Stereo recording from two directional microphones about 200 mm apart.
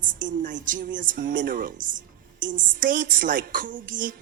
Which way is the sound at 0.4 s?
40° right (ahead or behind).